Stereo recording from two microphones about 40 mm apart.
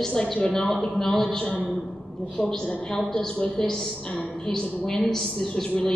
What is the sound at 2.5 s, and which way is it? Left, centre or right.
A woman's voice, centre.